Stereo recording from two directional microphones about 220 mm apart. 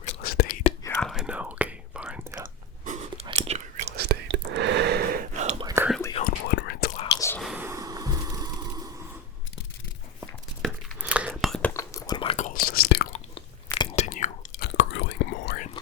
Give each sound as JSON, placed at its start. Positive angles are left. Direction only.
{"t": 0.0, "sound": "whispering", "side_deg": 40}
{"t": 0.9, "sound": "whispering", "side_deg": 0}
{"t": 3.2, "sound": "whispering", "side_deg": -30}
{"t": 3.9, "sound": "whispering", "side_deg": -45}
{"t": 5.6, "sound": "whispering", "side_deg": -10}
{"t": 6.2, "sound": "whispering", "side_deg": 45}
{"t": 6.9, "sound": "whispering", "side_deg": 25}
{"t": 7.2, "sound": "whispering", "side_deg": 10}
{"t": 7.4, "sound": "a sound", "side_deg": -10}
{"t": 10.2, "sound": "whispering", "side_deg": -5}
{"t": 11.7, "sound": "chewing", "side_deg": 15}
{"t": 13.3, "sound": "chewing", "side_deg": 30}
{"t": 14.8, "sound": "whispering", "side_deg": 55}